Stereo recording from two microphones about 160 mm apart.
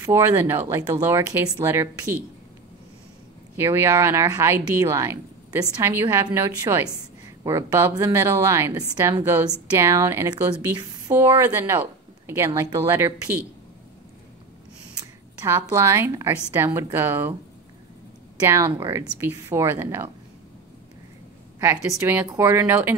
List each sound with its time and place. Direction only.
0.0 s speech: 15° right (ahead or behind)
3.5 s speech: 15° right (ahead or behind)
15.4 s speech: 15° right (ahead or behind)
18.4 s speech: 20° right (ahead or behind)
21.5 s speech: 15° right (ahead or behind)